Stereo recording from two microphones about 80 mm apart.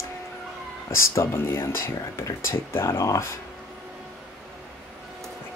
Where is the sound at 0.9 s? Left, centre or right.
Left.